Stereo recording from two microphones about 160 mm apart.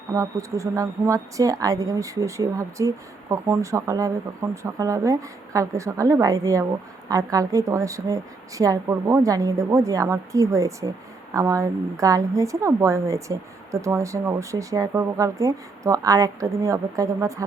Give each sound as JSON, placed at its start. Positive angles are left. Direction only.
{"t": 0.1, "sound": "a woman's voice", "side_deg": -20}